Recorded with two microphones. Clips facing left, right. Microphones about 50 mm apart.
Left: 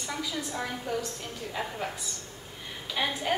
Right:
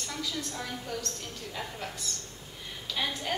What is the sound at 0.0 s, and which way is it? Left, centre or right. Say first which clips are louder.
A woman's voice: left 2 dB; centre.